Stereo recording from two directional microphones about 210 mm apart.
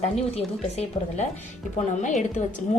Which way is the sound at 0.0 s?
30° left (ahead or behind).